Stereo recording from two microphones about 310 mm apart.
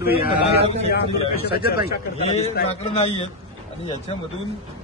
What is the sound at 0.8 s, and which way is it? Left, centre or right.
Speech, left.